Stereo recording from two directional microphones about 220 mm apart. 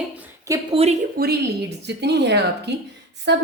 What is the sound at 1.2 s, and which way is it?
A woman's voice, 40° right (ahead or behind).